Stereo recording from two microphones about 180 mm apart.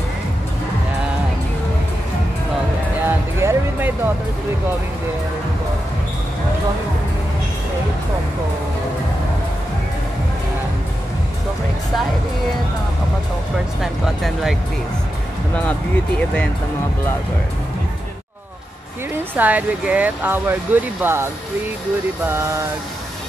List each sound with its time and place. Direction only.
3.1 s music: 10° right (ahead or behind)
13.7 s music: centre (ahead or behind)
19.3 s speech: 10° right (ahead or behind)
22.3 s speech: 15° right (ahead or behind)